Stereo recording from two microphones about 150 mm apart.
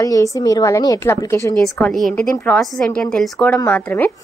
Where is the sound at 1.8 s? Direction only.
5° left (ahead or behind).